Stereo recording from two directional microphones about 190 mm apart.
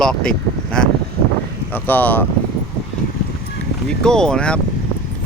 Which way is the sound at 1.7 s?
10° left (ahead or behind).